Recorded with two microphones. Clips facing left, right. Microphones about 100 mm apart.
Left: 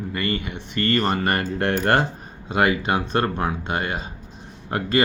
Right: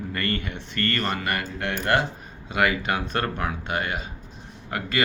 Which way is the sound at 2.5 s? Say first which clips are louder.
Left 3 dB; 30° left (ahead or behind).